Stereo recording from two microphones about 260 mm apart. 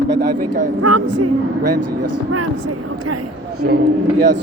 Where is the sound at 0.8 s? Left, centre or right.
Right.